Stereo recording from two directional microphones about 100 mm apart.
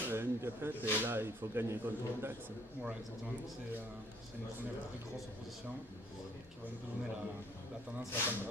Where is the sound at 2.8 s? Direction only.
15° right (ahead or behind).